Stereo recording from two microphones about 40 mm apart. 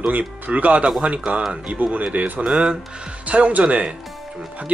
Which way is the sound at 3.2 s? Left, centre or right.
Right.